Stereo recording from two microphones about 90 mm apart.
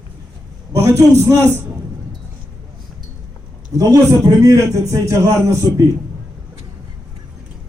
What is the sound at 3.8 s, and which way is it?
A man's voice, 40° right (ahead or behind).